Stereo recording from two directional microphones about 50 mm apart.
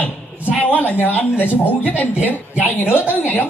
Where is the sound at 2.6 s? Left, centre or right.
Left.